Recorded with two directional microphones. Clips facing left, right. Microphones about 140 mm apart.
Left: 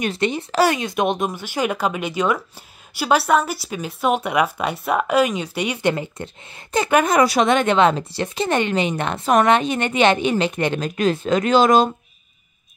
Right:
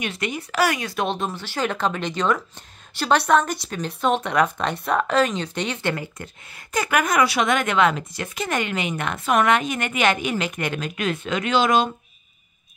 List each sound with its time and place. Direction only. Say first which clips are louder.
0.0 s speech: left 6 dB; 30° left (ahead or behind)